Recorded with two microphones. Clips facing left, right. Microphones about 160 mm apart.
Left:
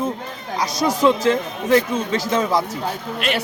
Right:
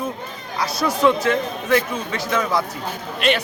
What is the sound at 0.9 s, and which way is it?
Speech, 30° left (ahead or behind).